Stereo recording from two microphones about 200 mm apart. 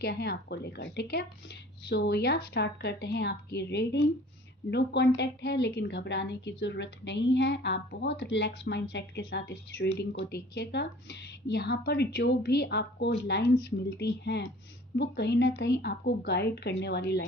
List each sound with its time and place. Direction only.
0.0 s a woman's voice: 55° left (ahead or behind)